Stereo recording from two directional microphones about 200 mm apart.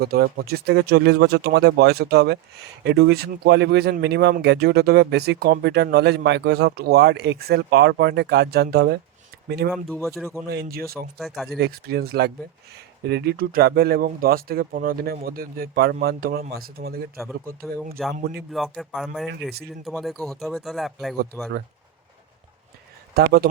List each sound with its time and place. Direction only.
0.0 s speech: 50° right (ahead or behind)
9.7 s speech: centre (ahead or behind)
10.4 s speech: 50° right (ahead or behind)
11.2 s speech: centre (ahead or behind)
11.6 s speech: 50° right (ahead or behind)
17.2 s speech: centre (ahead or behind)
23.1 s speech: 50° right (ahead or behind)